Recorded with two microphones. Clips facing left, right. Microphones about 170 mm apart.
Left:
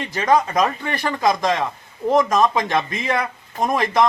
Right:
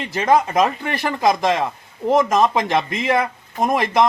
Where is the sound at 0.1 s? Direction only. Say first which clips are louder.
Right 1 dB; 20° right (ahead or behind).